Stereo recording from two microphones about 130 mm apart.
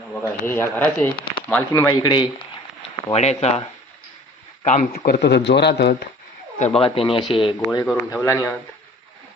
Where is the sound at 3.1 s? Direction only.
55° left (ahead or behind).